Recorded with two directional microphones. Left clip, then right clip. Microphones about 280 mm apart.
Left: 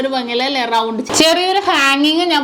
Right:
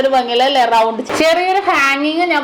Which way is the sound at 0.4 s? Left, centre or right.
Left.